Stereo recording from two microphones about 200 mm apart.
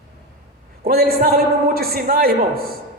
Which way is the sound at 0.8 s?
50° right (ahead or behind).